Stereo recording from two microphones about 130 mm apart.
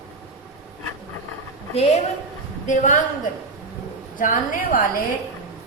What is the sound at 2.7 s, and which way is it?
Speech, 75° left (ahead or behind).